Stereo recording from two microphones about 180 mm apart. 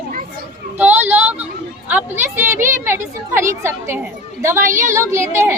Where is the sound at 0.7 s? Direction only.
10° right (ahead or behind).